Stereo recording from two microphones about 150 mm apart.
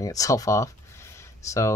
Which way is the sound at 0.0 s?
20° left (ahead or behind).